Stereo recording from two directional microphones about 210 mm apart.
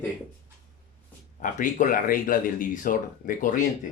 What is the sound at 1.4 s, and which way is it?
Speech, 40° left (ahead or behind).